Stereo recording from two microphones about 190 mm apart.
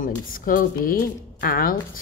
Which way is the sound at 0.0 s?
45° left (ahead or behind).